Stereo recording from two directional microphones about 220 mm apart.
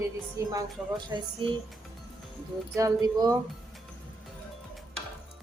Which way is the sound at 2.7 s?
15° right (ahead or behind).